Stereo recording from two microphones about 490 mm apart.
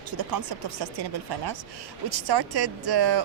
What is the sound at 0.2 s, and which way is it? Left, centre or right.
Speech, right.